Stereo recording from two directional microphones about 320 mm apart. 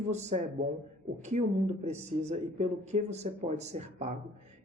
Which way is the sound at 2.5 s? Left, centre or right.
Right.